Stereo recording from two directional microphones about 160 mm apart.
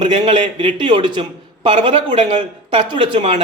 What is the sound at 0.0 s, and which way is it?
A man's voice, 30° right (ahead or behind).